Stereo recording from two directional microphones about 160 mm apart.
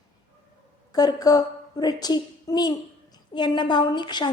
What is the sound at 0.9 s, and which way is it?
A woman's voice, 25° left (ahead or behind).